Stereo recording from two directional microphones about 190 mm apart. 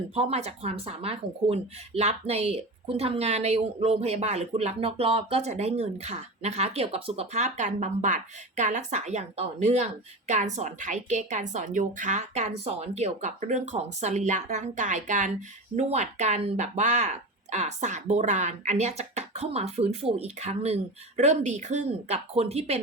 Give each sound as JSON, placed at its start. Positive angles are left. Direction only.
{"t": 0.1, "sound": "speech", "side_deg": -35}